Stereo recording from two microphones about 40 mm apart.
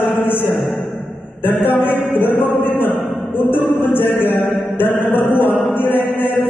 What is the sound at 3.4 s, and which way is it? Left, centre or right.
Music, left.